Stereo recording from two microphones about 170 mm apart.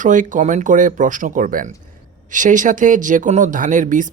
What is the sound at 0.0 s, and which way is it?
Speech, 50° right (ahead or behind).